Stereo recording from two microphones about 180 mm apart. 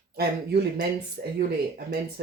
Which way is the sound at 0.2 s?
60° right (ahead or behind).